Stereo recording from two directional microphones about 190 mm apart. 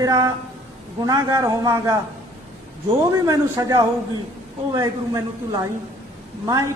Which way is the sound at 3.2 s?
15° right (ahead or behind).